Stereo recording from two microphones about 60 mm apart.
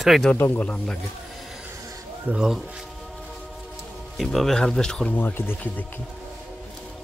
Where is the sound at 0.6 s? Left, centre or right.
Left.